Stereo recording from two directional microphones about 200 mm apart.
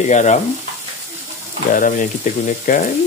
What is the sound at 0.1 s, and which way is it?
Speech, 35° left (ahead or behind).